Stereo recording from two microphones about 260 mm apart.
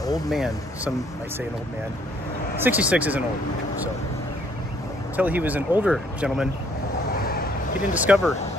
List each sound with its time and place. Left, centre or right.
0.3 s speech: centre
2.6 s speech: centre
5.1 s speech: centre
7.2 s a sound: left
7.9 s speech: centre